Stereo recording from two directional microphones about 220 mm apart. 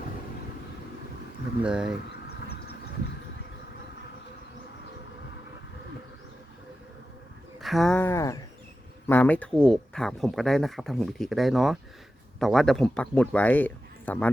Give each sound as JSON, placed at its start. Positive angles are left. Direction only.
{"t": 1.6, "sound": "speech", "side_deg": -5}
{"t": 2.2, "sound": "a sound", "side_deg": 45}
{"t": 7.6, "sound": "speech", "side_deg": 0}